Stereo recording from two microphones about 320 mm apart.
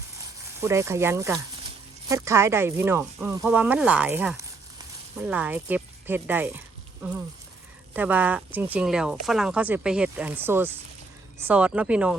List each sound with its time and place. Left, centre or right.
0.6 s speech: centre